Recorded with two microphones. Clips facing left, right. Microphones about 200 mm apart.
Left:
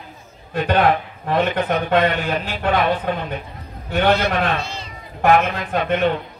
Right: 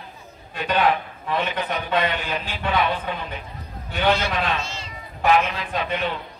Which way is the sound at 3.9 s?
60° left (ahead or behind).